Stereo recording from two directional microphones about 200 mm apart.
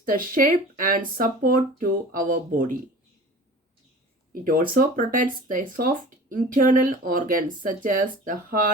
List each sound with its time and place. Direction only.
0.0 s speech: 45° right (ahead or behind)
4.3 s speech: 45° right (ahead or behind)